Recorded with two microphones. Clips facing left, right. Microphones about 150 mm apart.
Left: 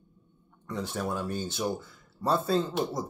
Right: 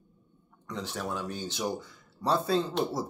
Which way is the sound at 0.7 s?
5° left (ahead or behind).